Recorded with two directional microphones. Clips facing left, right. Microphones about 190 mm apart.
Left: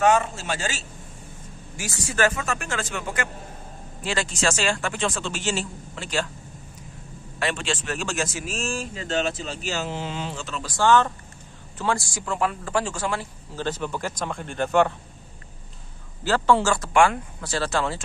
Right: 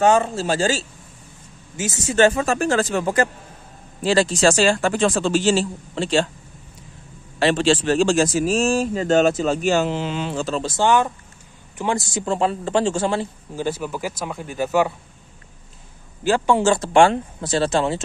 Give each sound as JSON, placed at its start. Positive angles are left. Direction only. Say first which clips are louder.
{"t": 0.0, "sound": "a man's voice", "louder": "right 4 dB", "side_deg": -30}
{"t": 1.8, "sound": "a man's voice", "louder": "right 7 dB", "side_deg": -20}
{"t": 7.3, "sound": "a man's voice", "louder": "right 10 dB", "side_deg": -30}
{"t": 10.3, "sound": "a man's voice", "louder": "right 10 dB", "side_deg": -35}
{"t": 10.7, "sound": "speech", "louder": "even", "side_deg": -15}
{"t": 13.6, "sound": "speech", "louder": "right 3 dB", "side_deg": -10}
{"t": 16.3, "sound": "speech", "louder": "right 3 dB", "side_deg": -15}